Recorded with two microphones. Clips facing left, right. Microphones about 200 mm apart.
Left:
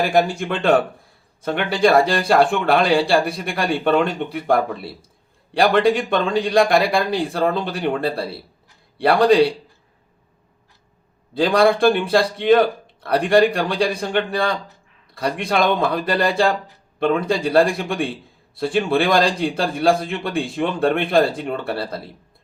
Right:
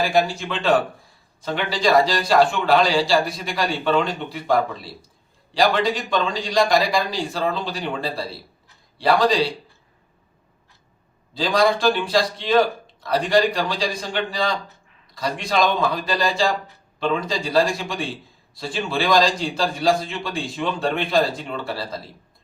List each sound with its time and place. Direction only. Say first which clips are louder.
0.1 s a man's voice: left 2 dB; 55° left (ahead or behind)
11.3 s a man's voice: left 4 dB; 55° left (ahead or behind)